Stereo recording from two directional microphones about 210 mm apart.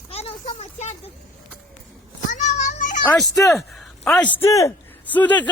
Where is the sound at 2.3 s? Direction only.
35° left (ahead or behind).